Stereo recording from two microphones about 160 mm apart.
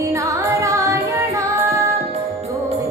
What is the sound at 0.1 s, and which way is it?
Music, 20° right (ahead or behind).